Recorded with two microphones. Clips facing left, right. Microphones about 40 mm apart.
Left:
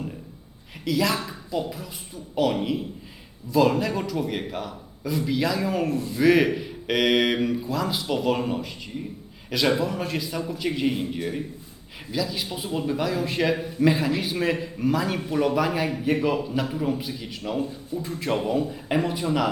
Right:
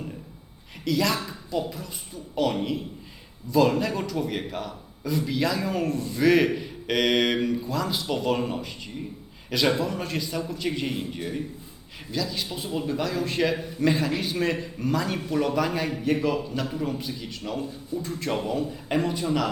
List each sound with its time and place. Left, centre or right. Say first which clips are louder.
0.9 s a man's voice: left 1 dB; centre